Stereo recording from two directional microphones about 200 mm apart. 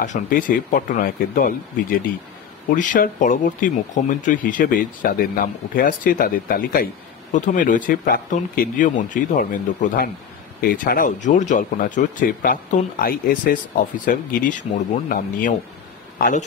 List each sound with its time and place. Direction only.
0.0 s speech: 40° left (ahead or behind)